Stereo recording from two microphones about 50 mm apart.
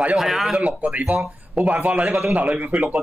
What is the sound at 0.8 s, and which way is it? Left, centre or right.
Speech, right.